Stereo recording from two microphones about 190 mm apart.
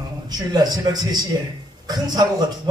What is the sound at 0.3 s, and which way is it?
A man's voice, 20° right (ahead or behind).